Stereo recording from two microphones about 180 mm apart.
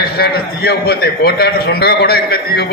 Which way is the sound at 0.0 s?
60° left (ahead or behind).